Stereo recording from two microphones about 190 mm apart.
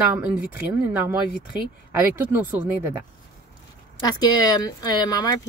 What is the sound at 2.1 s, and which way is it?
Speech, 10° right (ahead or behind).